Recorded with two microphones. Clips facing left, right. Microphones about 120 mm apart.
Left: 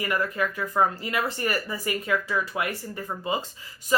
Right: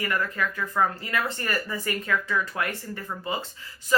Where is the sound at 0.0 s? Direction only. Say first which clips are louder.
Left 1 dB; 15° left (ahead or behind).